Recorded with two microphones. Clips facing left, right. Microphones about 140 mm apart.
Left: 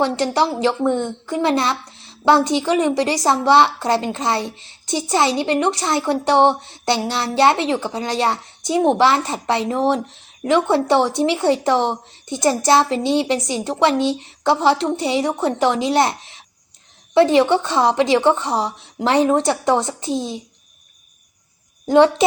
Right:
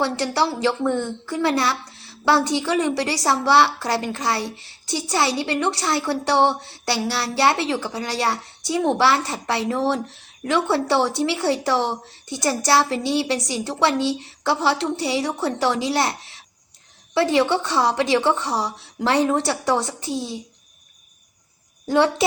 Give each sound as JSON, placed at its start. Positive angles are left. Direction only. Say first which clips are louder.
{"t": 0.0, "sound": "a woman's voice", "louder": "left 3 dB", "side_deg": 20}
{"t": 21.8, "sound": "a child's voice", "louder": "left 6 dB", "side_deg": 20}